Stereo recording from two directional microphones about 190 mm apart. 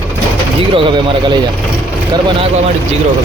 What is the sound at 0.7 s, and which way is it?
Speech, 25° right (ahead or behind).